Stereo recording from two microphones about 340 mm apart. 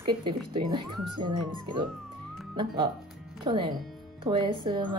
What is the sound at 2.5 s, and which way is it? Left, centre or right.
Speech, centre.